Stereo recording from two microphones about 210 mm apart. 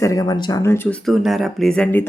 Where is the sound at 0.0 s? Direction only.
15° left (ahead or behind).